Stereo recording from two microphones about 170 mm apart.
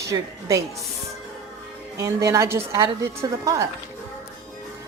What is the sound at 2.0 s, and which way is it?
A woman's voice, 20° right (ahead or behind).